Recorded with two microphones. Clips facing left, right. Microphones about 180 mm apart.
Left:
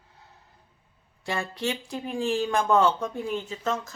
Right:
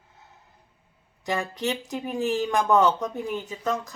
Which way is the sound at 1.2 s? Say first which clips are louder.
Right 2 dB; 15° right (ahead or behind).